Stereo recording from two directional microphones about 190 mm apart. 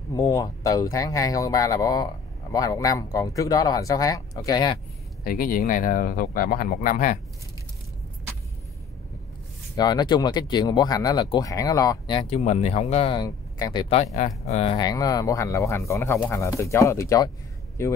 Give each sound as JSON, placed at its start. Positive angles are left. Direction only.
{"t": 0.1, "sound": "speech", "side_deg": 15}
{"t": 5.2, "sound": "speech", "side_deg": 50}
{"t": 9.8, "sound": "speech", "side_deg": 20}